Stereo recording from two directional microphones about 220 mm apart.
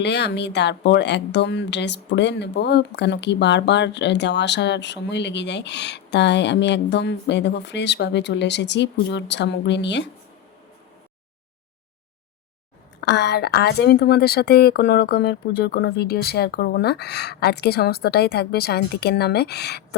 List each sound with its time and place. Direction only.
0.0 s speech: 50° left (ahead or behind)
13.0 s speech: 50° left (ahead or behind)